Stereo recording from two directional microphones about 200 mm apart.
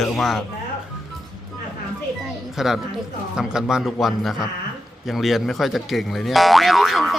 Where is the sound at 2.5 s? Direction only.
Centre (ahead or behind).